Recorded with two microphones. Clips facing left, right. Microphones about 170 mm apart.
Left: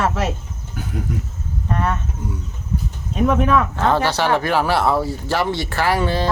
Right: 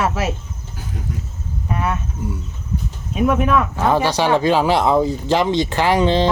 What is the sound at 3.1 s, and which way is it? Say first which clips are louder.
Speech: even; 5° right (ahead or behind).